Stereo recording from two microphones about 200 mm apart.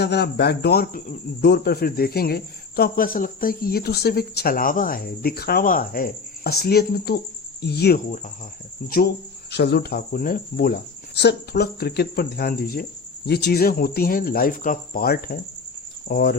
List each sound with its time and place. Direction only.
0.0 s speech: 55° left (ahead or behind)